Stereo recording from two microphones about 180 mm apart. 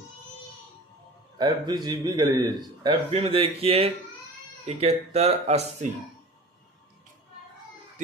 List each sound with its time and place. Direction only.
1.4 s speech: 25° right (ahead or behind)